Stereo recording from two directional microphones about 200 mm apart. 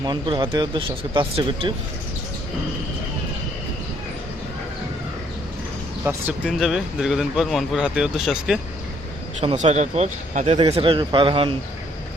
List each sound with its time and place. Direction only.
0.0 s speech: 20° right (ahead or behind)
6.4 s speech: centre (ahead or behind)
9.4 s speech: 30° right (ahead or behind)